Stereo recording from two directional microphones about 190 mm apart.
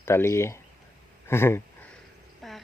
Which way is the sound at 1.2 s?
15° left (ahead or behind).